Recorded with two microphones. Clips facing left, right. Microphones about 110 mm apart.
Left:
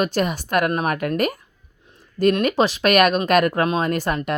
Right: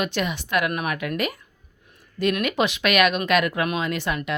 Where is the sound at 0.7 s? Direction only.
30° left (ahead or behind).